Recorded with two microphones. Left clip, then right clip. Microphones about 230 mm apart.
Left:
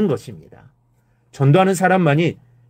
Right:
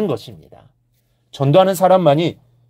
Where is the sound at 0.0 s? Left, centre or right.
Right.